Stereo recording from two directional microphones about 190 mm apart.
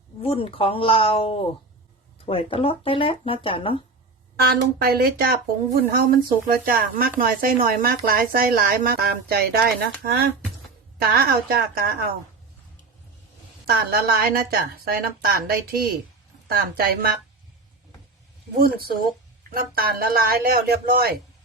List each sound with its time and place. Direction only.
0.2 s speech: 30° left (ahead or behind)
4.4 s speech: 55° right (ahead or behind)
14.3 s speech: 50° right (ahead or behind)
18.5 s speech: 50° right (ahead or behind)